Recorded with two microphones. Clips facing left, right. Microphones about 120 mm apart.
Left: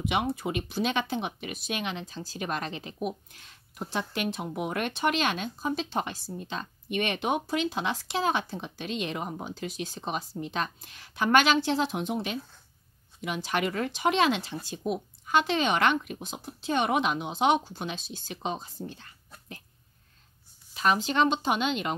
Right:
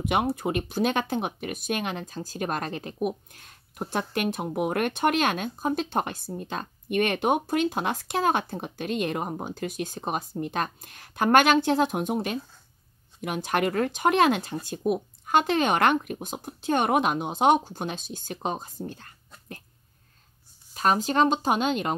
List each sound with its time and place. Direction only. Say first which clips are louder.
0.0 s speech: right 3 dB; 45° right (ahead or behind)
18.9 s whispering: right 3 dB; 45° right (ahead or behind)
20.7 s speech: right 2 dB; 40° right (ahead or behind)